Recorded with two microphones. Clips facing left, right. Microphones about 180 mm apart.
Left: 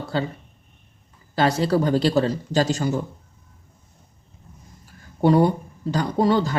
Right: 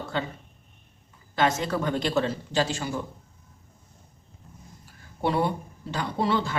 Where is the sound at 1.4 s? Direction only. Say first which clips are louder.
Left 5 dB; 35° left (ahead or behind).